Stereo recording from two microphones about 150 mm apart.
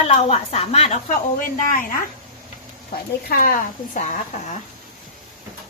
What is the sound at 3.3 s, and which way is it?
Speech, 70° left (ahead or behind).